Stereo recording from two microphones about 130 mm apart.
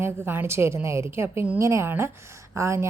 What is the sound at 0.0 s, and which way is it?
A woman's voice, 15° right (ahead or behind).